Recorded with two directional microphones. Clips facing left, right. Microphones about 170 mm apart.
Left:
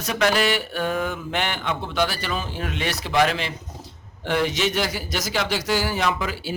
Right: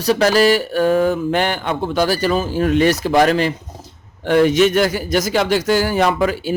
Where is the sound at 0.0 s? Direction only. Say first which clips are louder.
Right 8 dB; 35° right (ahead or behind).